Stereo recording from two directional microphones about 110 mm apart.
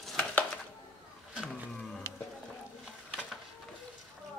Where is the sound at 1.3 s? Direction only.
10° right (ahead or behind).